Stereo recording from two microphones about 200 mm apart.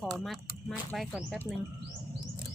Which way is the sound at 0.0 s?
Centre (ahead or behind).